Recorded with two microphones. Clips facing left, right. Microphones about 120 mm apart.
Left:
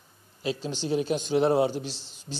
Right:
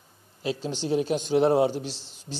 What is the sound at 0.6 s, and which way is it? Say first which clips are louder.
Speech: right 3 dB; 20° right (ahead or behind).